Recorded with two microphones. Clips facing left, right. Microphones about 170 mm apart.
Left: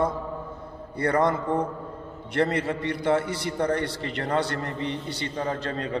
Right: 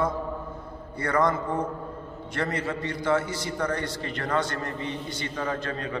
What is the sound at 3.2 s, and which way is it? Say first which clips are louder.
Speech: left 2 dB; 60° left (ahead or behind).